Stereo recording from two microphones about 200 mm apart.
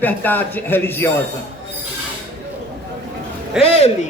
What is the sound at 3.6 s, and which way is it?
Speech, 30° left (ahead or behind).